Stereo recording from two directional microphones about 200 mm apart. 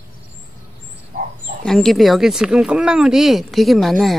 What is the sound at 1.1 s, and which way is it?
Insect, 40° right (ahead or behind).